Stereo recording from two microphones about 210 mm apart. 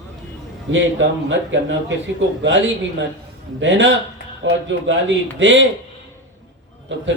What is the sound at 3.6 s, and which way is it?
A man's voice, 60° right (ahead or behind).